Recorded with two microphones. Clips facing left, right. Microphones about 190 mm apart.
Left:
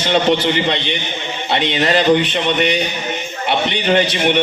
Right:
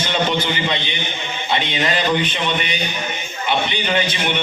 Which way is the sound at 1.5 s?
70° left (ahead or behind).